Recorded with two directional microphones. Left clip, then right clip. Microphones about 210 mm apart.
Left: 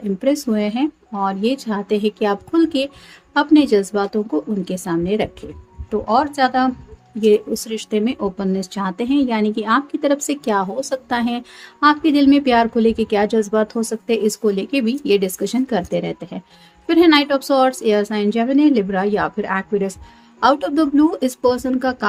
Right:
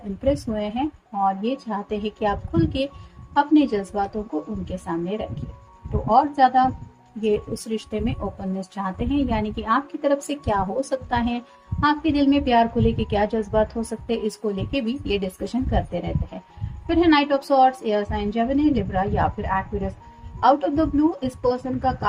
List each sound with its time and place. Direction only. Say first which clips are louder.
0.3 s speech: left 4 dB; 40° left (ahead or behind)